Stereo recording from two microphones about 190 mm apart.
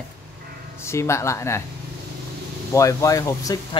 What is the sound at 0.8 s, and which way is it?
Speech, 15° left (ahead or behind).